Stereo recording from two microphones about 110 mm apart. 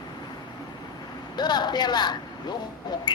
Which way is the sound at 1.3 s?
40° left (ahead or behind).